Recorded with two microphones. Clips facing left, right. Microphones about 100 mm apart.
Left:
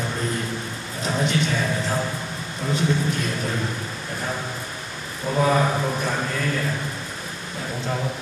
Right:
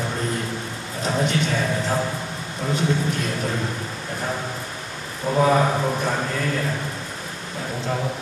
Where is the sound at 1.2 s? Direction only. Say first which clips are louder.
Right 1 dB; 40° right (ahead or behind).